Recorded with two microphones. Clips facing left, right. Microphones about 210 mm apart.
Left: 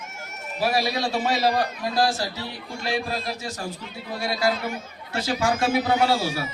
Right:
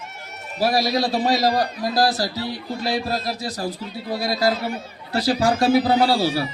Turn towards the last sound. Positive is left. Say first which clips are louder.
# right 4 dB
turn(degrees=-35)  # may be behind; listen again after turning